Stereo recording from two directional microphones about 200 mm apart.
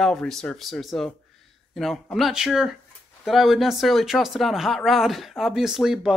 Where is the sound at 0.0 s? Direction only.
Centre (ahead or behind).